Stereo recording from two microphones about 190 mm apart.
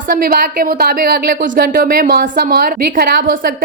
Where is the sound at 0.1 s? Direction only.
50° right (ahead or behind).